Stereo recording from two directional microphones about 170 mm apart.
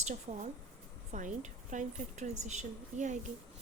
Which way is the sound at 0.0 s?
45° right (ahead or behind).